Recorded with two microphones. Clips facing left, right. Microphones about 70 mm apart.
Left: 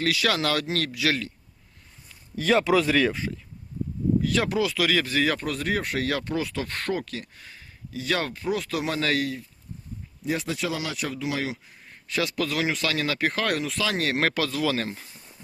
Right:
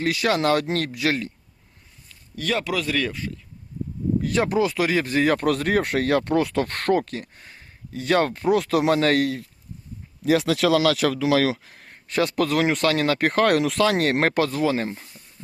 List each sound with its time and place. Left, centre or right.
0.0 s speech: right
2.0 s speech: centre
4.2 s speech: right
5.4 s speech: right
7.1 s speech: right
10.2 s speech: right
12.0 s speech: right